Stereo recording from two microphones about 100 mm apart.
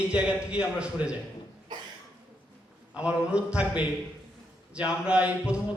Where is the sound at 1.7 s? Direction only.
45° right (ahead or behind).